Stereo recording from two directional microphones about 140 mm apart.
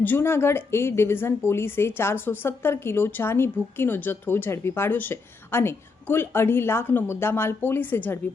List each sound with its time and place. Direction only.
0.0 s a woman's voice: 15° left (ahead or behind)